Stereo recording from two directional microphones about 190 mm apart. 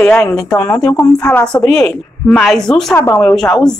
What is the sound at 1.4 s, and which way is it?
Speech, 5° left (ahead or behind).